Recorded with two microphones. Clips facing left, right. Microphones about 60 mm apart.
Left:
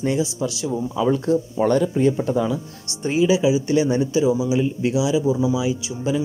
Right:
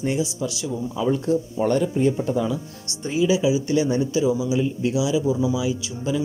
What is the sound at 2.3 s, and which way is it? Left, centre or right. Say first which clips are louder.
Speech: left 2 dB; left.